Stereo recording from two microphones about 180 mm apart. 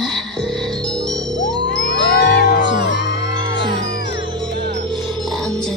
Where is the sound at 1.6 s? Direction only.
75° left (ahead or behind).